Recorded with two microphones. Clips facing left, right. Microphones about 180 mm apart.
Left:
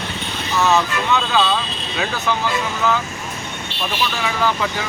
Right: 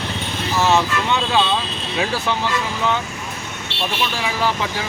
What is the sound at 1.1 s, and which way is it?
Speech, 25° right (ahead or behind).